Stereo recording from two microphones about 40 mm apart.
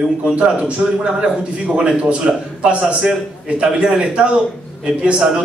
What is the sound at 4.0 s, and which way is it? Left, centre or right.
A man's voice, right.